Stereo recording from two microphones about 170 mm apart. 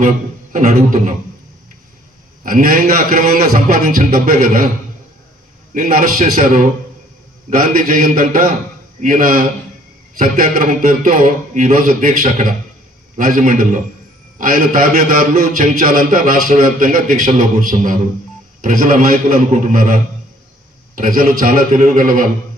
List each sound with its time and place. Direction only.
0.0 s a sound: 50° right (ahead or behind)
2.4 s a man's voice: 55° right (ahead or behind)
5.8 s a man's voice: 50° right (ahead or behind)